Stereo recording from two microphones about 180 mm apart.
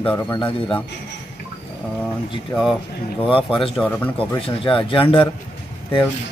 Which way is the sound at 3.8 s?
10° left (ahead or behind).